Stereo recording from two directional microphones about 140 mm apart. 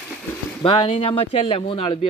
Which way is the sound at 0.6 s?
35° left (ahead or behind).